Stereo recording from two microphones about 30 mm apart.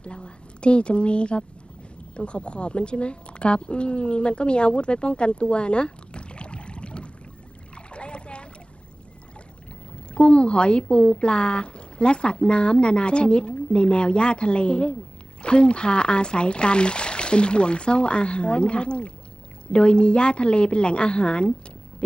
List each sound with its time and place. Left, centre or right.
0.0 s speech: left
7.8 s boat: left
10.2 s speech: left